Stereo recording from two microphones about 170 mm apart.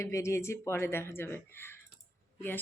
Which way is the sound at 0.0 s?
15° left (ahead or behind).